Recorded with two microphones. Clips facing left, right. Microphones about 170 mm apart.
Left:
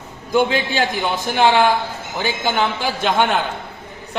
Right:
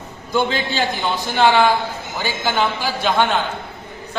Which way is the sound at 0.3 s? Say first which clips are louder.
Left 2 dB; 10° left (ahead or behind).